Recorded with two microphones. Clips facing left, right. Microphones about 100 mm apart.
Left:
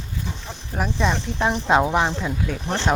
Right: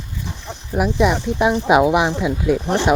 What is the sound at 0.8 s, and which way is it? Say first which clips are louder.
Speech: right 6 dB; 10° right (ahead or behind).